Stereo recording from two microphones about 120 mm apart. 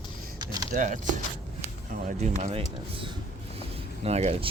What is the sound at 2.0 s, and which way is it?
Speech, 75° right (ahead or behind).